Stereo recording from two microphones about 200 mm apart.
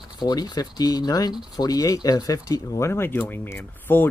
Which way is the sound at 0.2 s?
20° left (ahead or behind).